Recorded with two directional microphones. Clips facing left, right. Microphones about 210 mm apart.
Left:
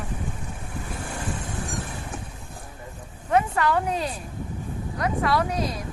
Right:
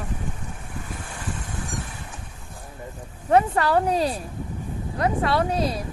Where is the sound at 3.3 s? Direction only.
35° right (ahead or behind).